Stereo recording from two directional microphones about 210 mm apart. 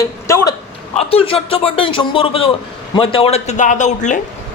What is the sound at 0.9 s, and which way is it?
A man's voice, 25° left (ahead or behind).